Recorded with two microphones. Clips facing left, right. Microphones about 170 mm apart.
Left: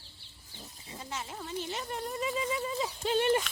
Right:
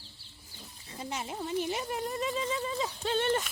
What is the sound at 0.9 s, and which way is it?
Speech, 20° right (ahead or behind).